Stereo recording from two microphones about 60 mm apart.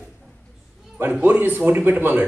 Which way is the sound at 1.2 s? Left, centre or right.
Right.